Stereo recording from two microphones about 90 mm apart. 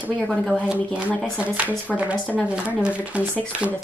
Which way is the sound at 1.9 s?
5° left (ahead or behind).